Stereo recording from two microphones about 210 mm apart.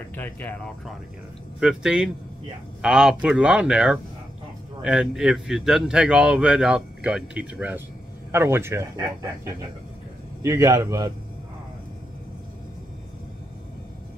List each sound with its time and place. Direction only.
0.1 s speech: 10° left (ahead or behind); by 11.1 s 15° right (ahead or behind)